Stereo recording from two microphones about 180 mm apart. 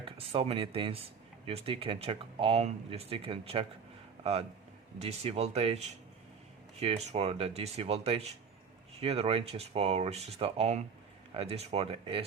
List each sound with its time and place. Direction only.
0.0 s speech: 30° right (ahead or behind)